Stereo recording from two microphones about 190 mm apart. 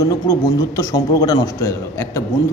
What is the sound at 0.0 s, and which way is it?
A man's voice, 20° left (ahead or behind).